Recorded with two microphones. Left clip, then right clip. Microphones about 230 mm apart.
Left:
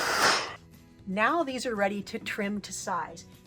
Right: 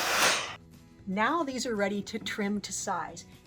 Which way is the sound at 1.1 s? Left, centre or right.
Centre.